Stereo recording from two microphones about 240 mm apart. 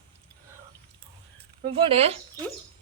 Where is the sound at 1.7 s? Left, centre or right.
Right.